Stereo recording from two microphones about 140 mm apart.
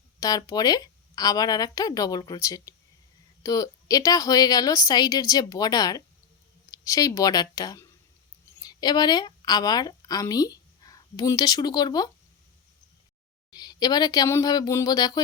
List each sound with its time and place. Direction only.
0.2 s a woman's voice: 25° left (ahead or behind)
13.5 s speech: 30° left (ahead or behind)